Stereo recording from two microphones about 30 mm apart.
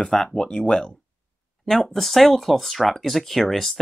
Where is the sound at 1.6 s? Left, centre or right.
Centre.